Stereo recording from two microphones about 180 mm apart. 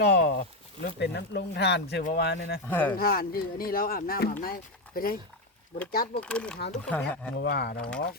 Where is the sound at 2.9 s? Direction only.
55° left (ahead or behind).